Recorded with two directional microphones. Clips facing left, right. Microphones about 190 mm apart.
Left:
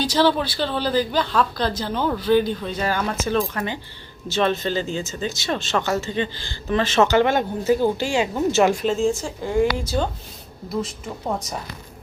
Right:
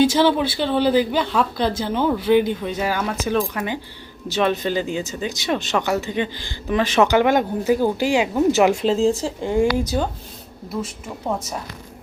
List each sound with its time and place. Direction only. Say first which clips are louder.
0.3 s speech: right 2 dB; 20° right (ahead or behind)
8.8 s speech: right 3 dB; 35° right (ahead or behind)
9.4 s speech: right 1 dB; 20° right (ahead or behind)